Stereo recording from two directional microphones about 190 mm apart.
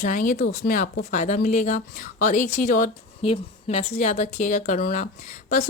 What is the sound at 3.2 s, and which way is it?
A woman's voice, 30° left (ahead or behind).